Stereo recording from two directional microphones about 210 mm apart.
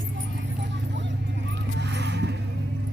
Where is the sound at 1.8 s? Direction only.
55° right (ahead or behind).